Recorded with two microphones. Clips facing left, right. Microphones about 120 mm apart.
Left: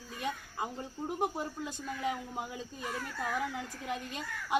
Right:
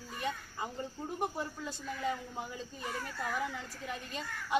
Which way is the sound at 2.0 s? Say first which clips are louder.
Left 1 dB; 15° left (ahead or behind).